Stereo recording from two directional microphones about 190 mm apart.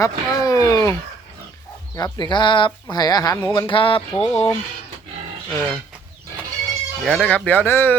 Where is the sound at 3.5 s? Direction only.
25° left (ahead or behind).